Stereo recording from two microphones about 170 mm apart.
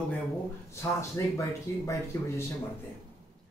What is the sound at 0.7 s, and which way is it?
Speech, 15° left (ahead or behind).